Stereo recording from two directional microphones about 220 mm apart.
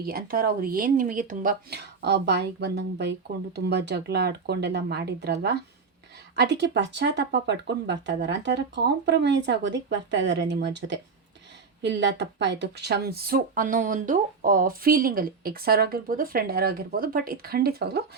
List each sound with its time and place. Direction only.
0.0 s speech: 40° right (ahead or behind)